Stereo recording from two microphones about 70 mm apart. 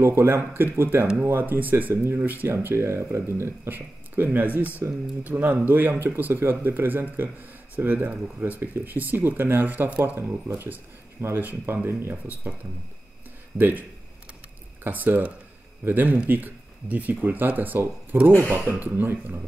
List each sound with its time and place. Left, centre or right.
0.0 s speech: right
12.4 s speech: right